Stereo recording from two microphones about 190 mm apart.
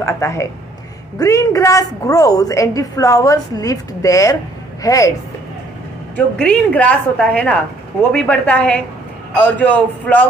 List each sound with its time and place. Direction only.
0.0 s a woman's voice: 15° left (ahead or behind)
6.1 s a woman's voice: 5° left (ahead or behind)